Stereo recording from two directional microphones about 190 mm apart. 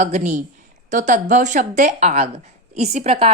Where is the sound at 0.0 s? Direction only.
35° right (ahead or behind).